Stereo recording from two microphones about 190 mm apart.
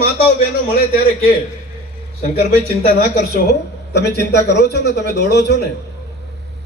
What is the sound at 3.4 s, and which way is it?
A man's voice, 60° left (ahead or behind).